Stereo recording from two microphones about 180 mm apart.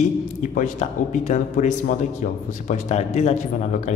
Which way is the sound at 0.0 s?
45° left (ahead or behind).